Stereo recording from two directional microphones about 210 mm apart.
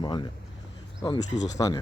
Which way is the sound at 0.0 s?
20° left (ahead or behind).